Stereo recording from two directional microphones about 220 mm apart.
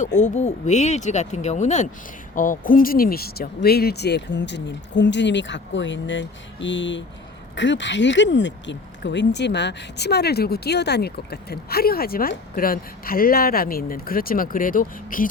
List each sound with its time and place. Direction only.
0.0 s speech: 35° left (ahead or behind)